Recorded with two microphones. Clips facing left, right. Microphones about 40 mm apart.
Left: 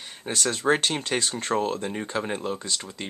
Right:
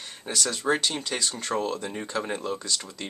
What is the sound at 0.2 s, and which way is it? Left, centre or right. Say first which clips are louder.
Speech: left 2 dB; left.